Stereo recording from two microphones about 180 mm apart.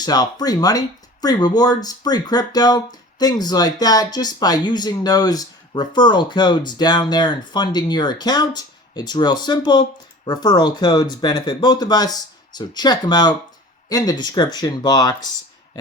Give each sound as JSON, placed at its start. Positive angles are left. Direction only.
{"t": 0.0, "sound": "speech", "side_deg": 20}